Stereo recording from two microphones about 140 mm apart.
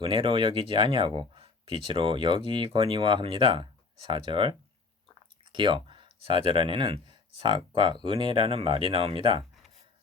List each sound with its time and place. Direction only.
0.0 s speech: 40° right (ahead or behind)